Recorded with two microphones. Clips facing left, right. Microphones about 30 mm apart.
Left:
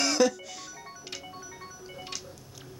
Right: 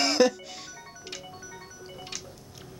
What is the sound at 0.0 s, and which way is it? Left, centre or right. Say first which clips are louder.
Music: right 2 dB; right.